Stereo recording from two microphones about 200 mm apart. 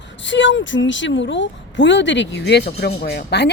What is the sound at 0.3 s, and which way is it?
Speech, 65° left (ahead or behind).